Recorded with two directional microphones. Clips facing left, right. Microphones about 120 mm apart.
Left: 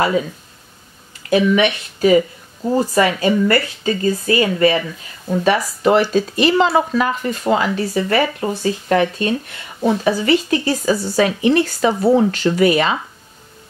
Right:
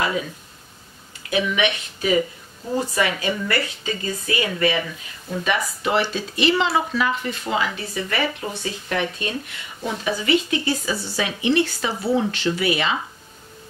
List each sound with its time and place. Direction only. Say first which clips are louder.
1.3 s speech: left 7 dB; 40° left (ahead or behind)